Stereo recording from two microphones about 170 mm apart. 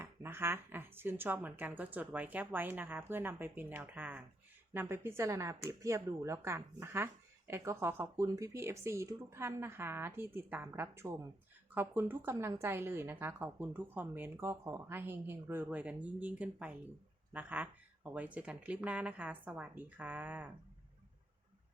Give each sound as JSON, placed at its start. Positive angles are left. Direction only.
{"t": 0.0, "sound": "speech", "side_deg": -15}